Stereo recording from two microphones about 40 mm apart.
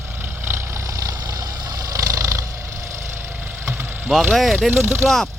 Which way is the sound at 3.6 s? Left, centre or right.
Right.